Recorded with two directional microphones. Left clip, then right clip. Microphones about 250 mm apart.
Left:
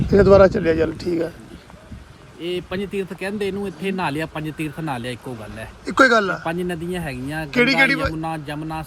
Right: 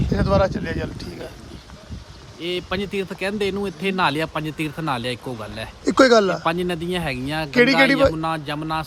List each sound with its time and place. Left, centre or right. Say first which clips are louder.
0.1 s speech: left 8 dB; left
2.4 s speech: right 1 dB; centre